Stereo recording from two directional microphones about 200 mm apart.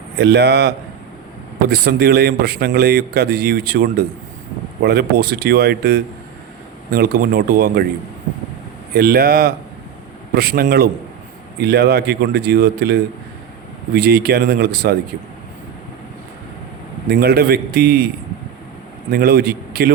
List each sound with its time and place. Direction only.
0.2 s a man's voice: 55° right (ahead or behind)
9.0 s a man's voice: 50° right (ahead or behind)
17.1 s a man's voice: 50° right (ahead or behind)
19.1 s a man's voice: 50° right (ahead or behind)